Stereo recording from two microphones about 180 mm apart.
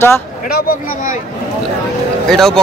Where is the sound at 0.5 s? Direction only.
55° left (ahead or behind).